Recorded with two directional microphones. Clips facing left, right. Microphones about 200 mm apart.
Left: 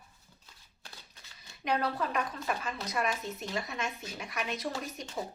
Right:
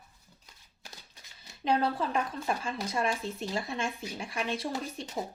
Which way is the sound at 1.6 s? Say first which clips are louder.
Right 3 dB; 30° right (ahead or behind).